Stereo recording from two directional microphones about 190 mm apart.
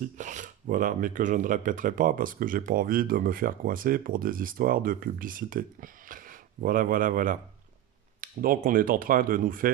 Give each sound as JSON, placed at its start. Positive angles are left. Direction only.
{"t": 0.2, "sound": "speech", "side_deg": -40}